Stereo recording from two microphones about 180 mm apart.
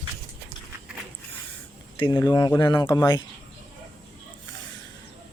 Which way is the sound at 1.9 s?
25° left (ahead or behind).